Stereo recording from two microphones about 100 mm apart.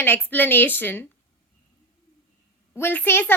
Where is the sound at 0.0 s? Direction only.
20° left (ahead or behind).